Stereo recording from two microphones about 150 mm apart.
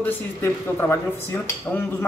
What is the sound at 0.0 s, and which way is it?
Speech, 15° left (ahead or behind).